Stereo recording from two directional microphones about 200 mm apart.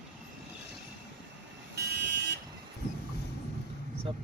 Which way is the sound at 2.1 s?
55° right (ahead or behind).